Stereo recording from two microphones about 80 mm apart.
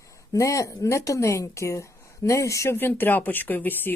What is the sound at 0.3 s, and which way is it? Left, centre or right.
Speech, left.